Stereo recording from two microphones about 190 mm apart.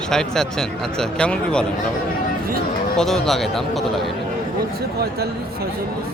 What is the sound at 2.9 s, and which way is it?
Speech, centre (ahead or behind).